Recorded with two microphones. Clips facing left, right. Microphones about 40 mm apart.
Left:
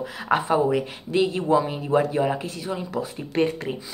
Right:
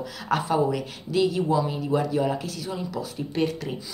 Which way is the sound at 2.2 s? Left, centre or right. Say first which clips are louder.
Left 2 dB; left.